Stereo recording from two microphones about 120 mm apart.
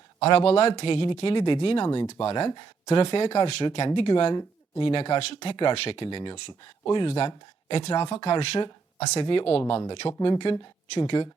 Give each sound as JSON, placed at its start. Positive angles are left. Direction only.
{"t": 0.3, "sound": "speech", "side_deg": 50}
{"t": 0.7, "sound": "speech", "side_deg": 40}
{"t": 2.2, "sound": "speech", "side_deg": 45}